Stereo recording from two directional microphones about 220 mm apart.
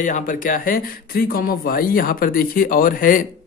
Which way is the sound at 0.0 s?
35° left (ahead or behind).